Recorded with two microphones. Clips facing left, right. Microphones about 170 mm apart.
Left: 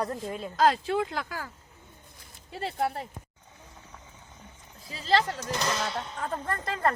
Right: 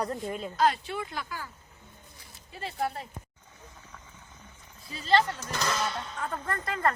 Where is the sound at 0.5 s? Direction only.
90° left.